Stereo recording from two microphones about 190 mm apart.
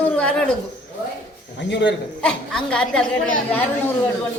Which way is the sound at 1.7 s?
70° left (ahead or behind).